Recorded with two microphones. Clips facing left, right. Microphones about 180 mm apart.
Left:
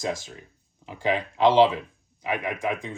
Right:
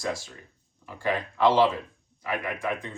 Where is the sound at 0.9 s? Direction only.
15° left (ahead or behind).